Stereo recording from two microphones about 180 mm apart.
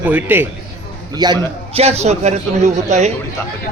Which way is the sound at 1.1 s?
25° right (ahead or behind).